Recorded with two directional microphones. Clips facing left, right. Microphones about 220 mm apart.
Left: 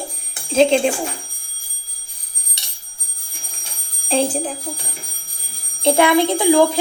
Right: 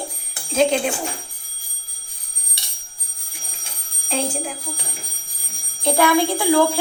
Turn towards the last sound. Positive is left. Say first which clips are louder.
# left 3 dB
turn(degrees=20)  # may be behind; listen again after turning